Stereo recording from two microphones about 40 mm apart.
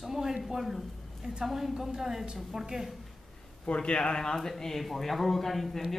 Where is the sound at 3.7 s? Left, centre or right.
Left.